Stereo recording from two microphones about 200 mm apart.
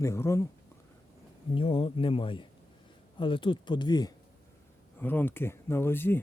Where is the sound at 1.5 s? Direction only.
25° left (ahead or behind).